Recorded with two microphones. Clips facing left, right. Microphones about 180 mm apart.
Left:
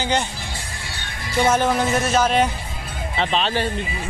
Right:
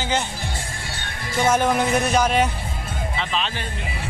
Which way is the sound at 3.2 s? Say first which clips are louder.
Left 8 dB; 35° left (ahead or behind).